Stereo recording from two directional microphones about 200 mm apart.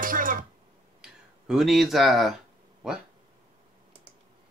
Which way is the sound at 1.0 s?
Centre (ahead or behind).